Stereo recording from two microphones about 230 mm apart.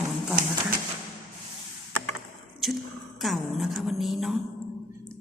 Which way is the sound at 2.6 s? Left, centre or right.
Centre.